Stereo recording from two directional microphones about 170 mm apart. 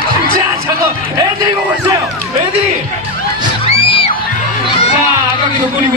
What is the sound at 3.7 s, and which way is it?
Music, 30° left (ahead or behind).